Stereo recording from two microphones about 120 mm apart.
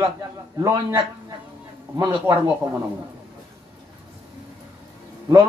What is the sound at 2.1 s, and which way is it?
Speech, 20° right (ahead or behind).